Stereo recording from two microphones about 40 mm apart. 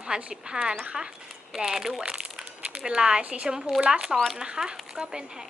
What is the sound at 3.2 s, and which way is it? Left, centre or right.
Speech, right.